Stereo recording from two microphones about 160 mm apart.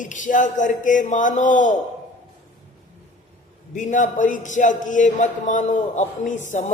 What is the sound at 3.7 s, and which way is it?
A man's voice, 55° left (ahead or behind).